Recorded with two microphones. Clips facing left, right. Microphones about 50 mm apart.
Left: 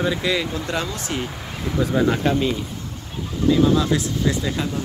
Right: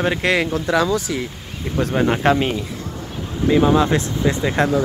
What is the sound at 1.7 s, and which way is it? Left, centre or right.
Speech, right.